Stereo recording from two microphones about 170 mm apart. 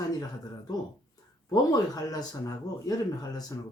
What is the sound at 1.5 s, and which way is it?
Speech, 20° left (ahead or behind).